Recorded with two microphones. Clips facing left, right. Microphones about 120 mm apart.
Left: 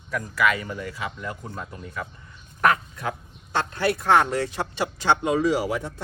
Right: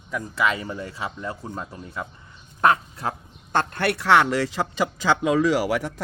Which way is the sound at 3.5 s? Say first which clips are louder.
Right 1 dB; 50° right (ahead or behind).